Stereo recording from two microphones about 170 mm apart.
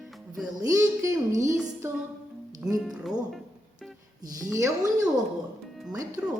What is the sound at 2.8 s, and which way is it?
Speech, 5° right (ahead or behind).